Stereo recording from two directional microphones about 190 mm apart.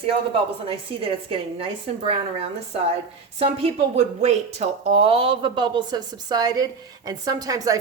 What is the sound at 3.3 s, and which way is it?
Speech, 35° right (ahead or behind).